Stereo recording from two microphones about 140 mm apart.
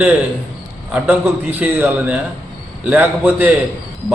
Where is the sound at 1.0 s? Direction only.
15° right (ahead or behind).